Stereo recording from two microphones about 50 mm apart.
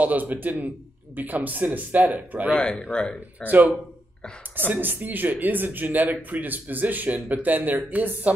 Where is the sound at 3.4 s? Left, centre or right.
Left.